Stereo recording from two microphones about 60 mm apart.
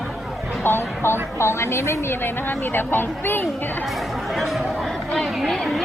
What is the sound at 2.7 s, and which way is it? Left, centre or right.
Speech, left.